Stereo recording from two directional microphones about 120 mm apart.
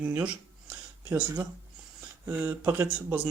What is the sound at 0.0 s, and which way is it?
Speech, 10° right (ahead or behind).